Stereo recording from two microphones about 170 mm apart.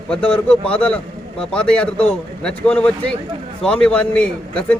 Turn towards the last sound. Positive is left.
turn(degrees=5)  # may be behind; listen again after turning